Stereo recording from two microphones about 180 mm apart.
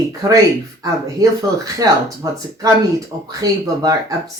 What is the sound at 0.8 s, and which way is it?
Speech, 20° right (ahead or behind).